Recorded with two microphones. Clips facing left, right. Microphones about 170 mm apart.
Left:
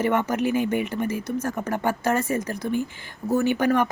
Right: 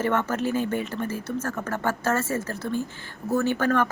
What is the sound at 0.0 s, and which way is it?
Speech, 15° left (ahead or behind).